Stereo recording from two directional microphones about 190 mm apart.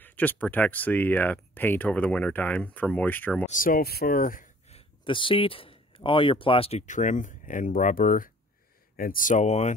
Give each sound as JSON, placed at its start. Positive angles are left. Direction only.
{"t": 0.0, "sound": "speech", "side_deg": 10}
{"t": 3.4, "sound": "speech", "side_deg": 45}
{"t": 4.6, "sound": "speech", "side_deg": 30}